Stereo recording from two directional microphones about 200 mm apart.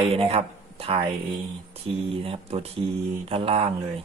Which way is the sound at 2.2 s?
30° right (ahead or behind).